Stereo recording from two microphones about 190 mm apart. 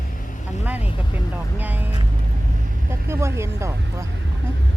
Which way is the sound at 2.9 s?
15° right (ahead or behind).